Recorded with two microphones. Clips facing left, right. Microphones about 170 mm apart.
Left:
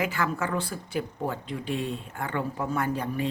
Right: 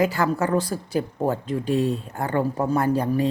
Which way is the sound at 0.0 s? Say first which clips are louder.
Right 7 dB; 35° right (ahead or behind).